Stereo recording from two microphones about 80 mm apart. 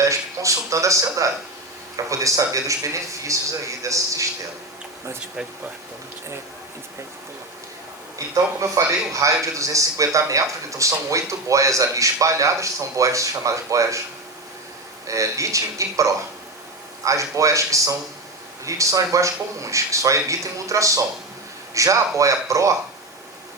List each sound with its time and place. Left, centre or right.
0.0 s speech: right
8.7 s speech: right
15.0 s speech: right